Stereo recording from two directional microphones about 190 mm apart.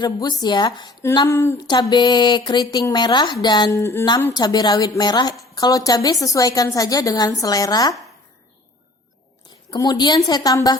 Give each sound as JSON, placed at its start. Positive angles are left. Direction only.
{"t": 0.0, "sound": "a woman's voice", "side_deg": 20}
{"t": 9.5, "sound": "a woman's voice", "side_deg": 20}